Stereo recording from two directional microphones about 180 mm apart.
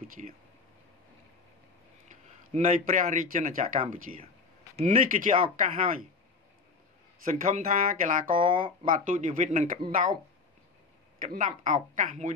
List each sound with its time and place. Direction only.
0.2 s speech: 40° right (ahead or behind)
2.5 s speech: 45° right (ahead or behind)
7.2 s speech: 50° right (ahead or behind)
11.1 s speech: 45° right (ahead or behind)